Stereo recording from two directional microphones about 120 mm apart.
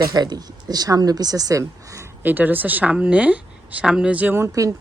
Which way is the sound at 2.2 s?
15° right (ahead or behind).